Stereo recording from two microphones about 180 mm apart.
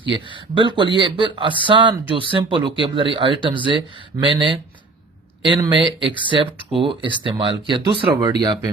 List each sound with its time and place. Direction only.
0.1 s speech: 25° right (ahead or behind)